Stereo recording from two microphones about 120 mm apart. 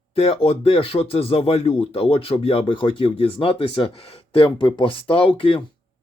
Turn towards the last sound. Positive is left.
turn(degrees=45)  # may be behind; listen again after turning